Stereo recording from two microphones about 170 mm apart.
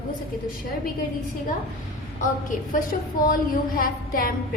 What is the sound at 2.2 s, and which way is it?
A woman's voice, 50° left (ahead or behind).